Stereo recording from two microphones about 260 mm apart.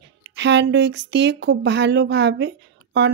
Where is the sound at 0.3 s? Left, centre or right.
Right.